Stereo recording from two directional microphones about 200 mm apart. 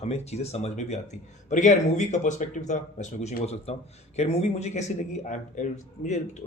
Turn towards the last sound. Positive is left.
turn(degrees=35)  # may be behind; listen again after turning